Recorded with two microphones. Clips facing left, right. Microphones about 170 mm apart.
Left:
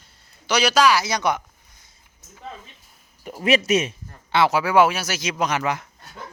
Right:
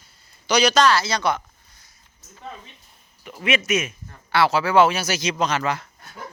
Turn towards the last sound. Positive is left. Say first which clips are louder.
# even
turn(degrees=15)  # may be behind; listen again after turning